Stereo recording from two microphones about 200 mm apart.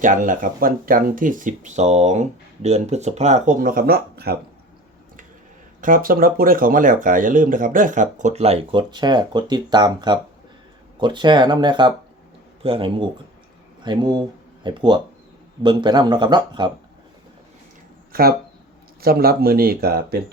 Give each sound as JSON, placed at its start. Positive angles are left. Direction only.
{"t": 0.0, "sound": "speech", "side_deg": -40}
{"t": 5.8, "sound": "speech", "side_deg": -45}
{"t": 18.1, "sound": "speech", "side_deg": -50}